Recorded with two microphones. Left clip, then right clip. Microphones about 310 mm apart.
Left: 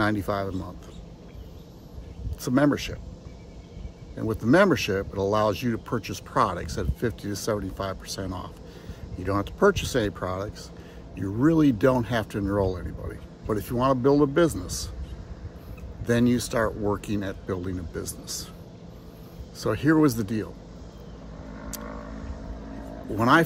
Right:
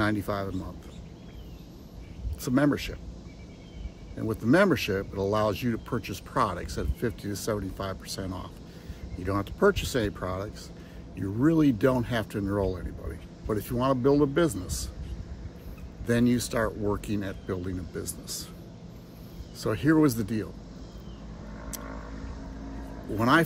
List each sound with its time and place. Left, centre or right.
0.0 s speech: centre
2.4 s speech: centre
4.2 s speech: centre
16.1 s speech: centre
19.6 s speech: centre
23.1 s speech: centre